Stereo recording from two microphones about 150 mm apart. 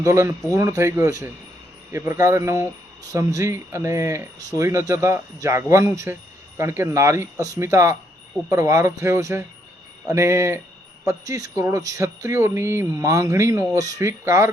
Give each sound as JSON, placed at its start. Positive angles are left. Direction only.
{"t": 0.0, "sound": "speech", "side_deg": -20}